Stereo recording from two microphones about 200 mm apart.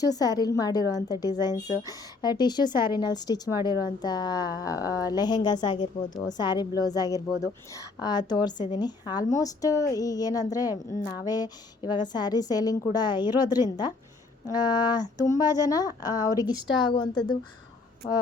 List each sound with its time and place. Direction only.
0.0 s a woman's voice: 20° left (ahead or behind)
1.5 s speech: 35° left (ahead or behind)
1.9 s a woman's voice: 20° left (ahead or behind)